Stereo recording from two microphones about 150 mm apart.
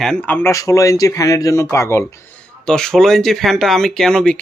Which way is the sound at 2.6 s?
5° left (ahead or behind).